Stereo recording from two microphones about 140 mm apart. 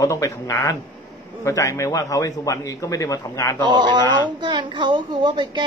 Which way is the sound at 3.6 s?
35° right (ahead or behind).